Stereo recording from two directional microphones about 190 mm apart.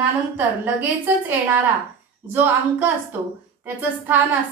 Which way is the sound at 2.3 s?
10° right (ahead or behind).